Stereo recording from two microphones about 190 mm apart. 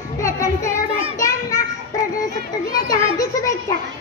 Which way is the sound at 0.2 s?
15° left (ahead or behind).